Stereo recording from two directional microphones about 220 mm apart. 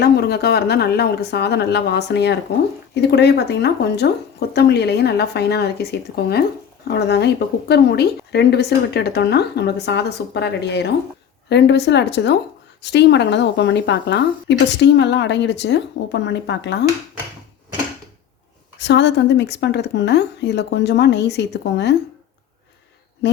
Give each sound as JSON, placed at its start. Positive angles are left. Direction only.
{"t": 0.0, "sound": "speech", "side_deg": 45}
{"t": 18.8, "sound": "speech", "side_deg": 50}